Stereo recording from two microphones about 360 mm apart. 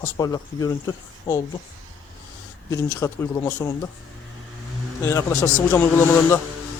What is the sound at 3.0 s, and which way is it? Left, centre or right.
Speech, centre.